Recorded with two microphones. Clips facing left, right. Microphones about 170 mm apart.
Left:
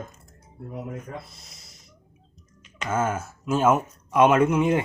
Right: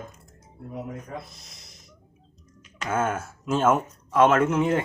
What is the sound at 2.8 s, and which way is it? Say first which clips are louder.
Speech: even; 5° left (ahead or behind).